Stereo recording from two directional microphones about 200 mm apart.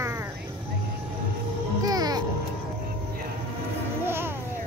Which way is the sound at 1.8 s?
20° right (ahead or behind).